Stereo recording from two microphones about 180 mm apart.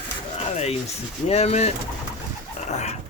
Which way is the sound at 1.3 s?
35° left (ahead or behind).